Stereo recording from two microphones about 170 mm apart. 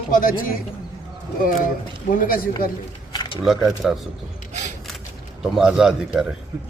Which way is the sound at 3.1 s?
25° left (ahead or behind).